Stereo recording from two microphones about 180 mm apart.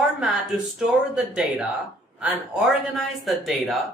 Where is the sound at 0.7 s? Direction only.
5° right (ahead or behind).